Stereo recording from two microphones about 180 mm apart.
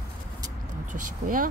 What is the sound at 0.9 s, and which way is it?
Speech, 50° right (ahead or behind).